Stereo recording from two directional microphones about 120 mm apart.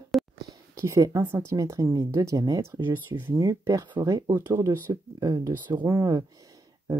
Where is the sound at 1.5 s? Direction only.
25° right (ahead or behind).